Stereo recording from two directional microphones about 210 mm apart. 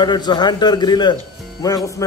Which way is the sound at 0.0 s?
20° left (ahead or behind).